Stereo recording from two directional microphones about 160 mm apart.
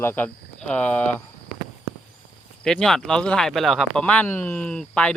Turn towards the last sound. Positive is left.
turn(degrees=5)  # may be behind; listen again after turning